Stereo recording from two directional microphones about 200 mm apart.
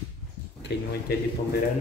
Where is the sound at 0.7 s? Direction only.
55° left (ahead or behind).